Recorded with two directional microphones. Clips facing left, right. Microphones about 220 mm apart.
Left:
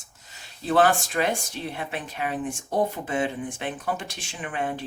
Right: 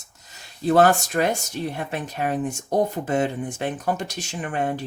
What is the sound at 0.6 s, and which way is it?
Speech, 40° right (ahead or behind).